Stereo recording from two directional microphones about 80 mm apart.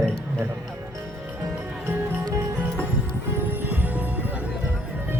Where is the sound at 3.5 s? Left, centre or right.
Right.